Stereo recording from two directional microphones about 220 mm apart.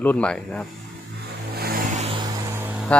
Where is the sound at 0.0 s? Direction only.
5° left (ahead or behind).